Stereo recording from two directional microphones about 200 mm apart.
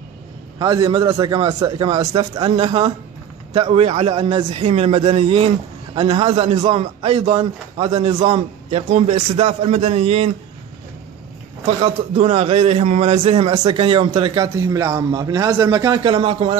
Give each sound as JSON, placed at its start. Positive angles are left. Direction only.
{"t": 0.6, "sound": "a man's voice", "side_deg": -20}
{"t": 11.6, "sound": "a man's voice", "side_deg": -30}